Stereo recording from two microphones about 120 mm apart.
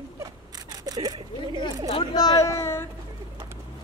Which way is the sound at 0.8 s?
30° right (ahead or behind).